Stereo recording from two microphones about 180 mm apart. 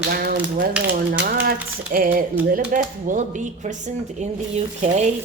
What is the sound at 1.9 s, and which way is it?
Speech, 50° right (ahead or behind).